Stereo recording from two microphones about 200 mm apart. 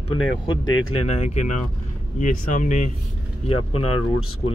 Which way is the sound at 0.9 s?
35° left (ahead or behind).